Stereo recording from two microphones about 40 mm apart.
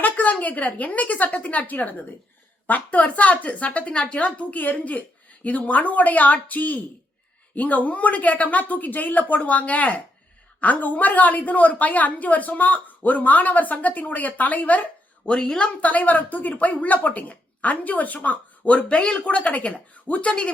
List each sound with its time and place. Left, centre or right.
0.0 s a woman's voice: left